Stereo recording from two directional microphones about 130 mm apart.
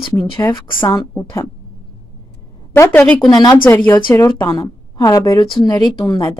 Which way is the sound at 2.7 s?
20° left (ahead or behind).